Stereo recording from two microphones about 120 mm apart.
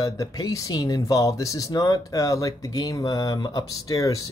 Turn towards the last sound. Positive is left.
turn(degrees=30)  # may be behind; listen again after turning